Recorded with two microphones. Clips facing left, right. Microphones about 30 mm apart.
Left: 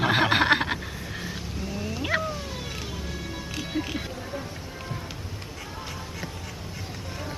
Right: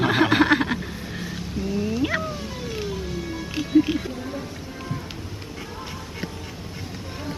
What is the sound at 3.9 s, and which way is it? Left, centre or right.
Music, centre.